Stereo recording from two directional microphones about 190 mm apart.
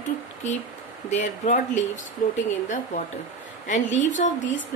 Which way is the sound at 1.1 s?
40° left (ahead or behind).